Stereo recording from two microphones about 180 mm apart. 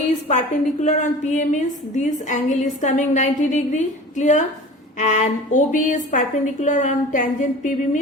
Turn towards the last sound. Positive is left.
turn(degrees=45)  # may be behind; listen again after turning